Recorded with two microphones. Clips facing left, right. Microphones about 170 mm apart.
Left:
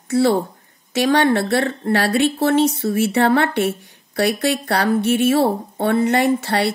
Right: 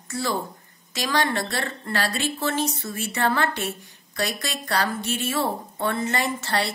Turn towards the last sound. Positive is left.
turn(degrees=65)  # may be behind; listen again after turning